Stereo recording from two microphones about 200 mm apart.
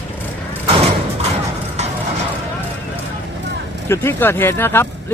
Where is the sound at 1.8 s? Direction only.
35° right (ahead or behind).